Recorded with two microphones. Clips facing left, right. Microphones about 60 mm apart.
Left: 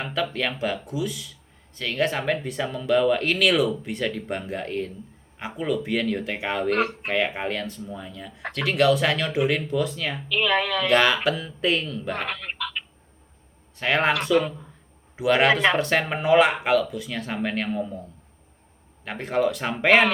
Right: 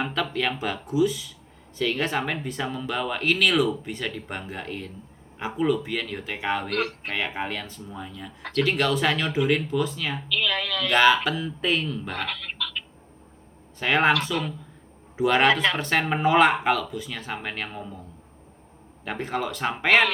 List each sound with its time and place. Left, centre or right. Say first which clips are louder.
0.0 s speech: even; centre
6.7 s speech: left 4 dB; centre
7.1 s speech: left 4 dB; centre
10.2 s speech: left 5 dB; left
10.8 s speech: right 2 dB; centre
12.1 s speech: left 1 dB; left
13.7 s speech: right 1 dB; centre
19.0 s speech: left 5 dB; centre
19.9 s speech: left 2 dB; centre